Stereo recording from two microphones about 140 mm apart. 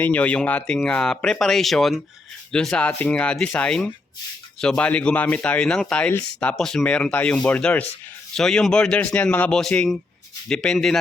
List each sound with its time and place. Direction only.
0.0 s speech: 10° left (ahead or behind)